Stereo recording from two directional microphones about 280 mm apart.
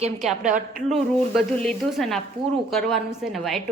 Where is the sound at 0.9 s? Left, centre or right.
Centre.